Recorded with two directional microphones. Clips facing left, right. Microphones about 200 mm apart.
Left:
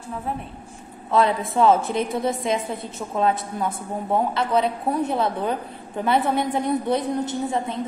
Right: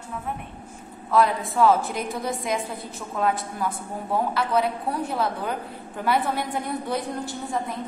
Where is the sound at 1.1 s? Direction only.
25° left (ahead or behind).